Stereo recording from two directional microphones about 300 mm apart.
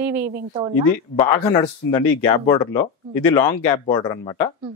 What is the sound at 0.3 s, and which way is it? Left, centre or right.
Speech, right.